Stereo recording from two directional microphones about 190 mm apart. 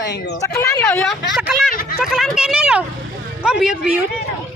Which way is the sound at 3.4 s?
5° right (ahead or behind).